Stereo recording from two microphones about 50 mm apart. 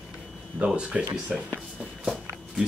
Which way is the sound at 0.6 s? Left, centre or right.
Right.